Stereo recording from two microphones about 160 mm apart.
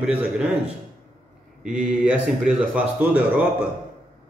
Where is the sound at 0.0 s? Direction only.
5° right (ahead or behind).